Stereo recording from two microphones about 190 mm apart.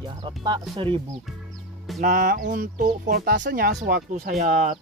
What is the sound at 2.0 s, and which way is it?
Speech, 45° right (ahead or behind).